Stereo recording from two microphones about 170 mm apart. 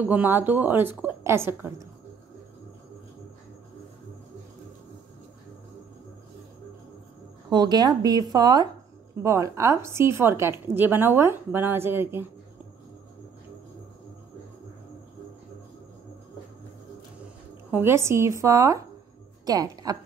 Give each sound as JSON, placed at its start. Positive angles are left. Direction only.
{"t": 0.1, "sound": "a woman's voice", "side_deg": -10}
{"t": 7.4, "sound": "a woman's voice", "side_deg": -25}
{"t": 17.6, "sound": "a woman's voice", "side_deg": -10}